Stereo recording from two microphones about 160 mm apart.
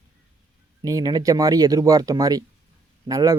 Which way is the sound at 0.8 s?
25° right (ahead or behind).